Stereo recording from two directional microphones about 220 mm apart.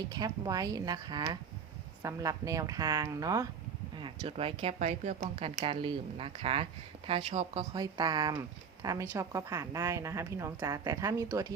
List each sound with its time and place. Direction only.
0.1 s speech: 15° right (ahead or behind)
4.0 s speech: 25° right (ahead or behind)